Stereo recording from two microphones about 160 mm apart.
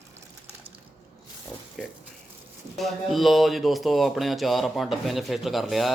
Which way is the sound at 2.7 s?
Centre (ahead or behind).